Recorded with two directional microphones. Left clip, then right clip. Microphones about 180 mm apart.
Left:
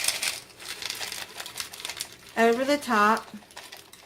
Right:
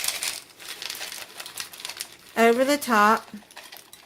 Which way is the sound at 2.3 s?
40° right (ahead or behind).